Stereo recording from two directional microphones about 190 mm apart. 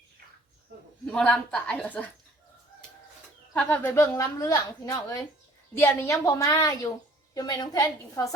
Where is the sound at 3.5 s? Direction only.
10° left (ahead or behind).